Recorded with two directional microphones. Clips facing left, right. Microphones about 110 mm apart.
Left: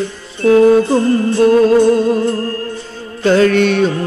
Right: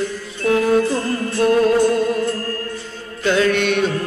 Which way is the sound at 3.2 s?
35° left (ahead or behind).